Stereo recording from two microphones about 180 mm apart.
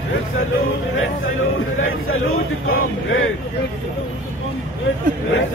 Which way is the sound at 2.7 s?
90° left.